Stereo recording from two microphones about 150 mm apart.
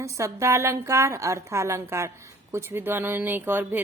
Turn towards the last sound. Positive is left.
turn(degrees=-15)  # may be behind; listen again after turning